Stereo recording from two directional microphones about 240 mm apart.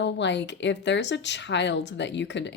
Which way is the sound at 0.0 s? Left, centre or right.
Left.